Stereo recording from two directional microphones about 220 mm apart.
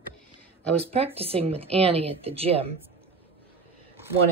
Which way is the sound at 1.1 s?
25° right (ahead or behind).